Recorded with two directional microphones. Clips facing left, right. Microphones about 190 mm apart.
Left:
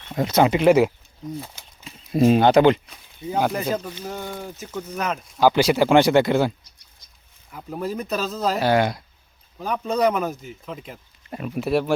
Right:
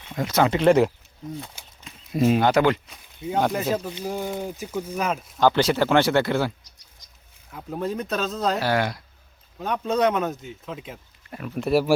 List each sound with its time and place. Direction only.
0.2 s speech: 20° left (ahead or behind); by 0.9 s 5° left (ahead or behind)
1.6 s a sound: 10° right (ahead or behind)
2.1 s speech: 35° left (ahead or behind)
3.2 s speech: centre (ahead or behind)
3.8 s speech: 15° right (ahead or behind)
5.4 s speech: 10° left (ahead or behind)
7.5 s speech: centre (ahead or behind)
8.6 s speech: 20° left (ahead or behind)
9.6 s speech: centre (ahead or behind)
11.3 s speech: 25° left (ahead or behind)
11.5 s speech: centre (ahead or behind)